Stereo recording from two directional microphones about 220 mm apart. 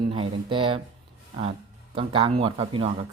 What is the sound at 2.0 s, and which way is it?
Speech, 25° right (ahead or behind).